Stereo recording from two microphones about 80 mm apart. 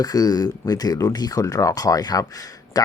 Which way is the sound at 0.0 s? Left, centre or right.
Left.